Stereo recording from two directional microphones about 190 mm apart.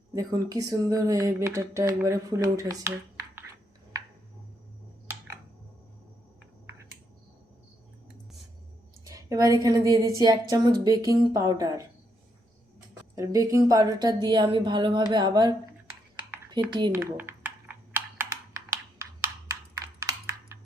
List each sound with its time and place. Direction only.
0.1 s speech: 20° right (ahead or behind)
9.0 s a woman's voice: 15° right (ahead or behind)
13.1 s a woman's voice: 15° right (ahead or behind)
16.9 s computer keyboard: 10° right (ahead or behind)
19.5 s computer keyboard: 15° right (ahead or behind)